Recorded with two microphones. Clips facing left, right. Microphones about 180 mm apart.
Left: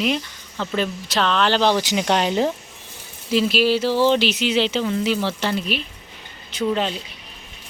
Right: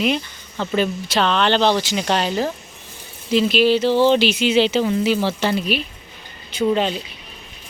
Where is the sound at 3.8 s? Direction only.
25° right (ahead or behind).